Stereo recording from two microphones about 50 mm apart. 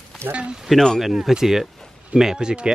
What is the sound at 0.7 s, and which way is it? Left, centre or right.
Speech, centre.